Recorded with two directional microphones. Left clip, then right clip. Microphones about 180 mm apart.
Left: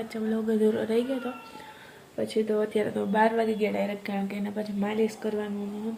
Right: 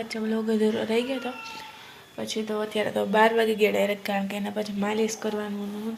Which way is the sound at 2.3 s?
Centre (ahead or behind).